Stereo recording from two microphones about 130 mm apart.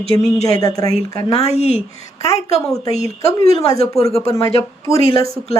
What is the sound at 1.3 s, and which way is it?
Speech, 55° left (ahead or behind).